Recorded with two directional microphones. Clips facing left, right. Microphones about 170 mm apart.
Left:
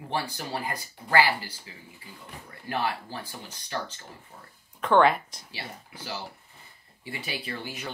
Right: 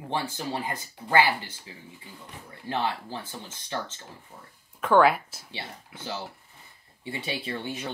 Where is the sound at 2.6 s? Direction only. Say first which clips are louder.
Right 1 dB; 25° right (ahead or behind).